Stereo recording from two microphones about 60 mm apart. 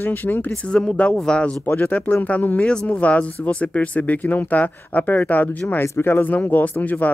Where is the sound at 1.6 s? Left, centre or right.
Left.